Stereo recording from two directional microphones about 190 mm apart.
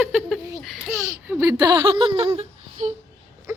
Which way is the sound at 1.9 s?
25° right (ahead or behind).